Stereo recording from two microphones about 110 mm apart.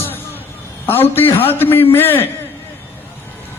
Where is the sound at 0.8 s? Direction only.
20° left (ahead or behind).